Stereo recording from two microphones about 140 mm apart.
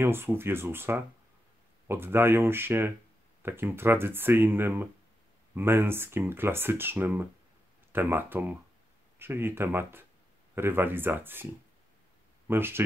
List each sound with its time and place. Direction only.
0.0 s speech: 15° right (ahead or behind)
12.4 s speech: 15° right (ahead or behind)